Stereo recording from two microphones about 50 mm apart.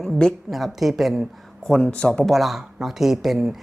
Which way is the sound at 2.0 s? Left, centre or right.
Centre.